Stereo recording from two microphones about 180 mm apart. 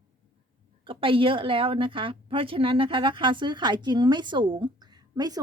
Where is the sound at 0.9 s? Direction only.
30° right (ahead or behind).